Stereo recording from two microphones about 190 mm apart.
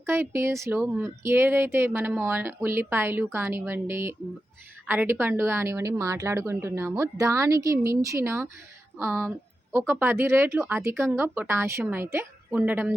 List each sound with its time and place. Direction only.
0.0 s a woman's voice: 10° right (ahead or behind)